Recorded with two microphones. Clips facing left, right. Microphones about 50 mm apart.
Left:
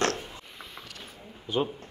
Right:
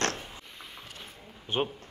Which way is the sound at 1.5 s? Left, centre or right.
Right.